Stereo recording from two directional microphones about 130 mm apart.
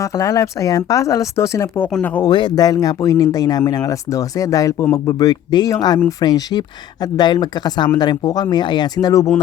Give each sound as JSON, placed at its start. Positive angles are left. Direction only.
{"t": 0.0, "sound": "speech", "side_deg": 25}
{"t": 2.3, "sound": "speech", "side_deg": 35}